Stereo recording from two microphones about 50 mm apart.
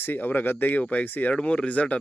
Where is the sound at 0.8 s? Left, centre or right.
Left.